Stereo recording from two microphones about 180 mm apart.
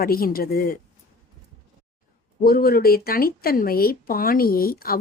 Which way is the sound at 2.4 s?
55° left (ahead or behind).